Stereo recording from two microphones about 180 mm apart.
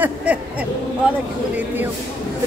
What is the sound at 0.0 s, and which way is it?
Owl, 10° right (ahead or behind).